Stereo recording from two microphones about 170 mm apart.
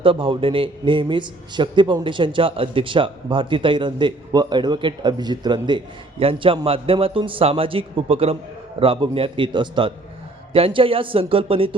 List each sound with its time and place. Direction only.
0.0 s a man's voice: 30° right (ahead or behind)